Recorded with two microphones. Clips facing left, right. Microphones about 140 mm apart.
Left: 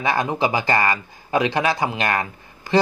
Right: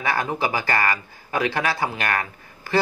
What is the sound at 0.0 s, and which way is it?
Speech, 20° left (ahead or behind).